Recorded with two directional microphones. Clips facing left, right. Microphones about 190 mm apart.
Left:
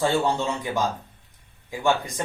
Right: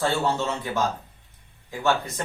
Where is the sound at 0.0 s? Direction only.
15° left (ahead or behind).